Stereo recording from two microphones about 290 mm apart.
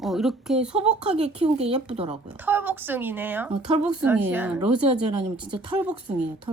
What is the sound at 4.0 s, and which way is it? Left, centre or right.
Speech, centre.